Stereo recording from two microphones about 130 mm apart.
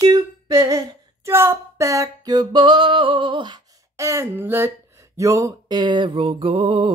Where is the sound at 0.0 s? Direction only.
30° right (ahead or behind).